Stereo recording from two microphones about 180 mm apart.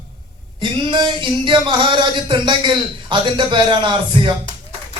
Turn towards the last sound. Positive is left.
turn(degrees=-25)  # may be behind; listen again after turning